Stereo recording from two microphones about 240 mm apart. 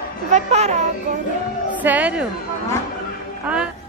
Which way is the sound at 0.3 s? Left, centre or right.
Right.